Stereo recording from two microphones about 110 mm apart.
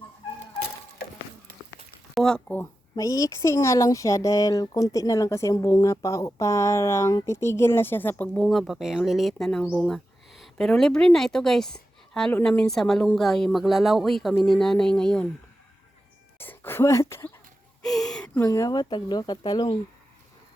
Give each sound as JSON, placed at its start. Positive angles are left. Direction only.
{"t": 2.1, "sound": "a sound", "side_deg": 5}
{"t": 2.9, "sound": "speech", "side_deg": 30}
{"t": 8.4, "sound": "a woman's voice", "side_deg": 0}
{"t": 16.4, "sound": "speech", "side_deg": 20}
{"t": 17.8, "sound": "speech", "side_deg": 5}
{"t": 18.3, "sound": "speech", "side_deg": 30}